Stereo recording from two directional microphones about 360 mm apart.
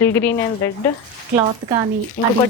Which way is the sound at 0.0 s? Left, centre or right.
Centre.